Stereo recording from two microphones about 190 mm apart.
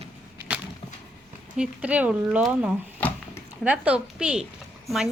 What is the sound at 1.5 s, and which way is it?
A woman's voice, 5° right (ahead or behind).